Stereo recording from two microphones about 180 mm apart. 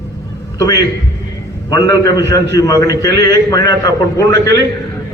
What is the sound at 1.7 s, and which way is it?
A man's voice, 20° left (ahead or behind).